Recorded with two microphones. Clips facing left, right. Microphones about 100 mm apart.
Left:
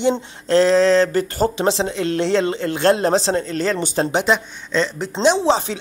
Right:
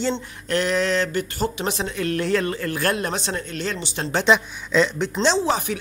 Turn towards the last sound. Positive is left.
turn(degrees=25)  # may be behind; listen again after turning